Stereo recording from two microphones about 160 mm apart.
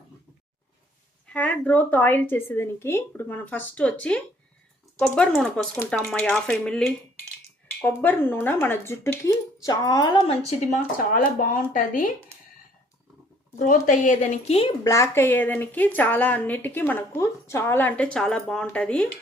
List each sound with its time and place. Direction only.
1.3 s a woman's voice: 10° left (ahead or behind); by 10.3 s 30° left (ahead or behind)
10.7 s speech: 55° left (ahead or behind)
13.6 s speech: 55° left (ahead or behind)
14.8 s a woman's voice: 20° left (ahead or behind)